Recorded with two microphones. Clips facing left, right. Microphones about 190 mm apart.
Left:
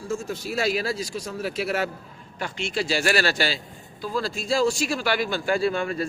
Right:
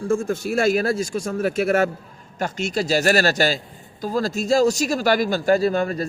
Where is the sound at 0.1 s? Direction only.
50° right (ahead or behind).